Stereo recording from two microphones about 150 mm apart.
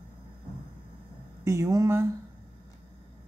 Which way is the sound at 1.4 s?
20° right (ahead or behind).